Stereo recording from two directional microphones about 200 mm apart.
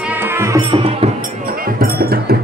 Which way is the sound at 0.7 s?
30° right (ahead or behind).